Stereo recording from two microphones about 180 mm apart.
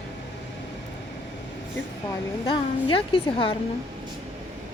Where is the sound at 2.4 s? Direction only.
30° left (ahead or behind).